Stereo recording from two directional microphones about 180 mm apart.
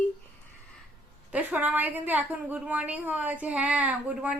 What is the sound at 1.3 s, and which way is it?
A woman's voice, 10° right (ahead or behind).